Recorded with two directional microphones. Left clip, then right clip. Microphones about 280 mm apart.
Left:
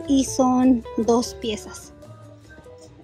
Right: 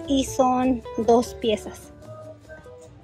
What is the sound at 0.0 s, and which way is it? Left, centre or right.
A woman's voice, centre.